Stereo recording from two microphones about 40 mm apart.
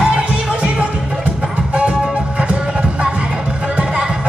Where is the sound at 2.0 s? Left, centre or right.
Right.